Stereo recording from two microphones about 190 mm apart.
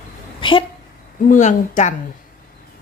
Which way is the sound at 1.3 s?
40° left (ahead or behind).